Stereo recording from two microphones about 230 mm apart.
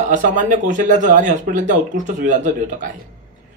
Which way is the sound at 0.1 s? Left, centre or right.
Right.